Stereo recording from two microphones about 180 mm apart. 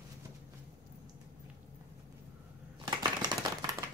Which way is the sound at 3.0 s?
20° right (ahead or behind).